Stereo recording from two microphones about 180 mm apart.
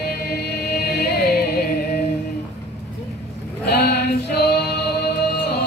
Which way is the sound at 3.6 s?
65° left (ahead or behind).